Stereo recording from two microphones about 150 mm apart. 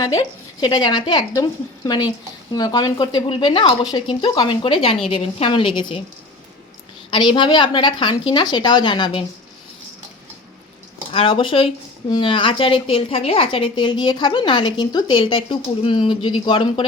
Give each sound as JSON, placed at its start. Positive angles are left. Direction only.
{"t": 0.0, "sound": "a woman's voice", "side_deg": 25}
{"t": 7.1, "sound": "a woman's voice", "side_deg": 30}
{"t": 11.1, "sound": "a woman's voice", "side_deg": 35}